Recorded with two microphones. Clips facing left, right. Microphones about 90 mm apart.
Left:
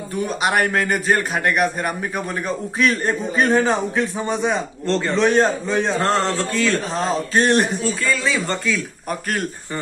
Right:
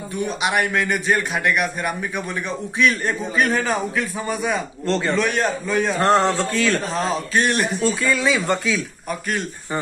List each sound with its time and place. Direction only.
0.3 s a man's voice: 40° left (ahead or behind)
4.8 s a man's voice: centre (ahead or behind)
5.1 s a man's voice: 30° left (ahead or behind)
6.0 s speech: 15° right (ahead or behind)
6.5 s a man's voice: centre (ahead or behind)
6.9 s a man's voice: 35° left (ahead or behind)
7.8 s speech: 15° right (ahead or behind)